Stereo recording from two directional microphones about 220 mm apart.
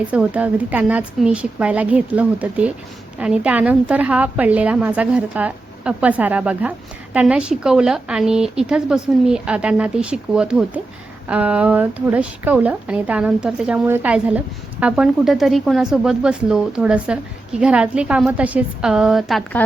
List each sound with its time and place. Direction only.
0.1 s a woman's voice: 5° right (ahead or behind)